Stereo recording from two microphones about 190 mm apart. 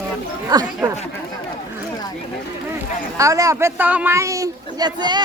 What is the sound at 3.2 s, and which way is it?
A man's voice, 15° right (ahead or behind).